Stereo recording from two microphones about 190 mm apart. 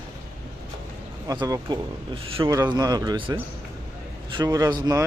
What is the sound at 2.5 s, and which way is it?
Speech, 20° right (ahead or behind).